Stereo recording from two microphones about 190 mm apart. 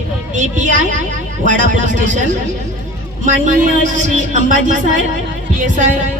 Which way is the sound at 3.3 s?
40° right (ahead or behind).